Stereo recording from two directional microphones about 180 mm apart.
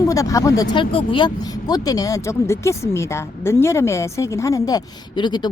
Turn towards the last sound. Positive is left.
turn(degrees=25)  # may be behind; listen again after turning